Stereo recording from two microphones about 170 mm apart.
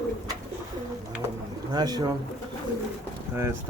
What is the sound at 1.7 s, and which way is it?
Speech, 25° right (ahead or behind).